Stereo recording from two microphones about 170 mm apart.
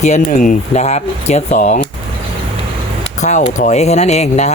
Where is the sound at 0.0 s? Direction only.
45° left (ahead or behind).